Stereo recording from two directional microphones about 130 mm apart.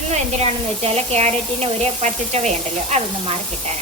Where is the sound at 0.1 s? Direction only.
50° right (ahead or behind).